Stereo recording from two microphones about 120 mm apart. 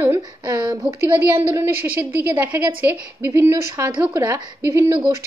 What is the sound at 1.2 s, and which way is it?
A woman's voice, 20° right (ahead or behind).